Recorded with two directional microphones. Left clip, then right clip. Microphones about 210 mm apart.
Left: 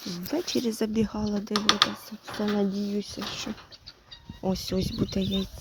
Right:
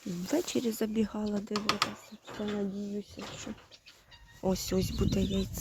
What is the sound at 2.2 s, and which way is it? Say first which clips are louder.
Speech: left 7 dB; 30° left (ahead or behind).